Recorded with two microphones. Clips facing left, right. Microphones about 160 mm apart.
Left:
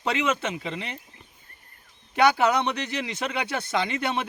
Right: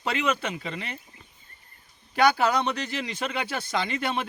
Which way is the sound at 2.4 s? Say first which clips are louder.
Left 1 dB; 20° left (ahead or behind).